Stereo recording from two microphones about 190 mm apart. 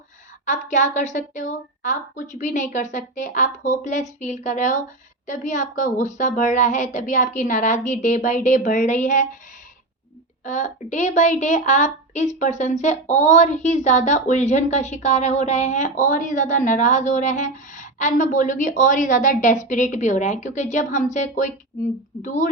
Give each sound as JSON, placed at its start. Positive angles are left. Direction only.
{"t": 0.4, "sound": "a woman's voice", "side_deg": 40}
{"t": 10.4, "sound": "a woman's voice", "side_deg": 40}